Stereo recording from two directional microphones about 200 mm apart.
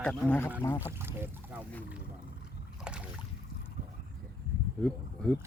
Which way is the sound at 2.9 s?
5° right (ahead or behind).